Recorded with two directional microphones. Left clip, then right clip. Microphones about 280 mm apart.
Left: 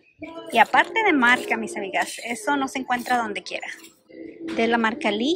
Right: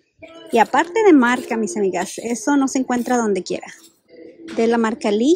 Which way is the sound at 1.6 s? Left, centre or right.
Right.